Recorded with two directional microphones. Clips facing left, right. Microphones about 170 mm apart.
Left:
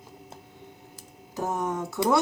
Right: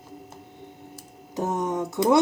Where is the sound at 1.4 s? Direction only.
20° right (ahead or behind).